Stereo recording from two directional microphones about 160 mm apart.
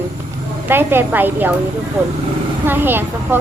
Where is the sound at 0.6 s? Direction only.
15° right (ahead or behind).